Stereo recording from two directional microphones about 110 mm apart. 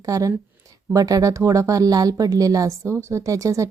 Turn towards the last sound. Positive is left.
turn(degrees=-30)  # may be behind; listen again after turning